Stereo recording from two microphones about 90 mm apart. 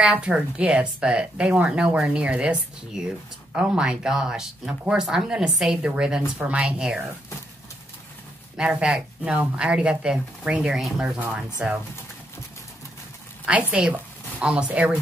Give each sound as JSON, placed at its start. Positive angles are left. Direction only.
{"t": 0.0, "sound": "speech", "side_deg": -10}
{"t": 8.5, "sound": "speech", "side_deg": -10}
{"t": 11.1, "sound": "speech", "side_deg": -15}
{"t": 13.5, "sound": "speech", "side_deg": -15}